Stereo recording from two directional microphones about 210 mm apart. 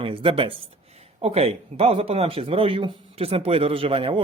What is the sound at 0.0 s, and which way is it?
Speech, 25° right (ahead or behind).